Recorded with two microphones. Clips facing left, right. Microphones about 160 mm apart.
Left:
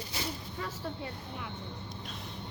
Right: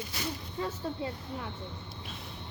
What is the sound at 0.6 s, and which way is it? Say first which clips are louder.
Speech: right 6 dB; 25° right (ahead or behind).